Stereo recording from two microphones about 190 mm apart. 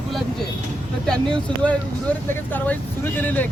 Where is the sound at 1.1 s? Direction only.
5° left (ahead or behind).